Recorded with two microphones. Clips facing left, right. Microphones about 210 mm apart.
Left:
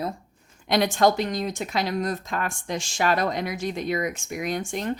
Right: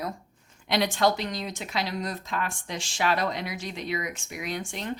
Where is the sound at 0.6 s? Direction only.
45° left (ahead or behind).